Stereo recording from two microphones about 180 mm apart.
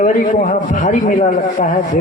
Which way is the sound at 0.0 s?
45° left (ahead or behind).